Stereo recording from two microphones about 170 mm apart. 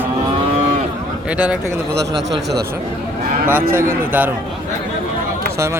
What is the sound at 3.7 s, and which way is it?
Speech, 10° right (ahead or behind).